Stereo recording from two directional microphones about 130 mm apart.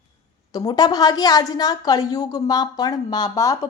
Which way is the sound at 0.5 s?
30° left (ahead or behind).